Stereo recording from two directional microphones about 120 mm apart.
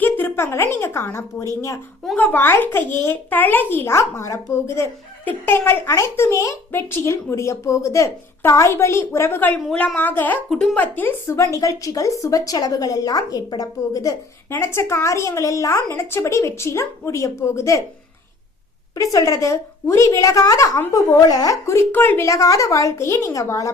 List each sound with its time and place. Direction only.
0.0 s a woman's voice: 15° left (ahead or behind)
9.6 s speech: 5° left (ahead or behind)
10.5 s speech: 5° left (ahead or behind)
10.8 s a child's voice: 15° left (ahead or behind)
18.9 s a child's voice: 30° left (ahead or behind)